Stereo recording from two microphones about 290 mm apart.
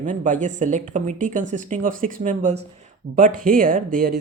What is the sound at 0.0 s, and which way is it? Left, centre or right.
Speech, right.